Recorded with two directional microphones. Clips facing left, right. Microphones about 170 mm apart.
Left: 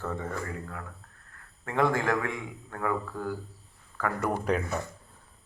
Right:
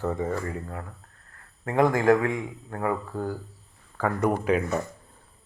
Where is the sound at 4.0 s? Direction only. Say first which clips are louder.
Right 5 dB; 20° right (ahead or behind).